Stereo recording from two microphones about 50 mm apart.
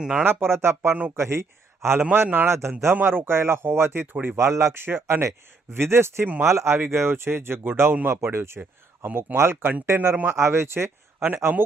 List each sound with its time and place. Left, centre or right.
0.0 s speech: right
0.3 s a man's voice: right
2.1 s a man's voice: right
2.5 s speech: right
2.9 s speech: right
4.4 s speech: right
4.9 s speech: right
6.4 s speech: right
6.7 s speech: right
8.1 s speech: right